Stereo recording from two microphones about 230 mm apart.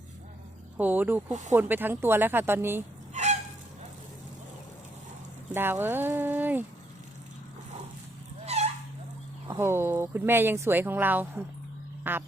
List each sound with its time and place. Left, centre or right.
0.8 s speech: centre
1.3 s speech: right
1.5 s speech: centre
3.1 s fowl: right
5.5 s speech: centre
8.4 s fowl: right
9.5 s speech: centre
12.1 s music: centre